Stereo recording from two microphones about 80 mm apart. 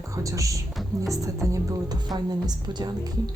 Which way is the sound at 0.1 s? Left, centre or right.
Right.